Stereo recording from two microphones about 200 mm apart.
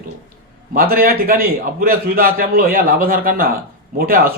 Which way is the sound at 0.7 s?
50° right (ahead or behind).